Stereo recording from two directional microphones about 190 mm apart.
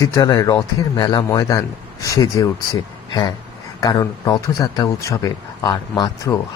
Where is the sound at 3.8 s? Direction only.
20° left (ahead or behind).